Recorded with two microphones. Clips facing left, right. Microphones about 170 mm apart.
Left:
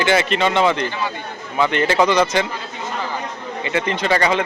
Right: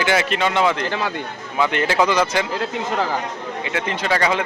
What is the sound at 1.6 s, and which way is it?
Speech, 5° right (ahead or behind).